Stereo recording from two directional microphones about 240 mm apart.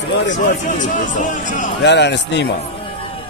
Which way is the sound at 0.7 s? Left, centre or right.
Left.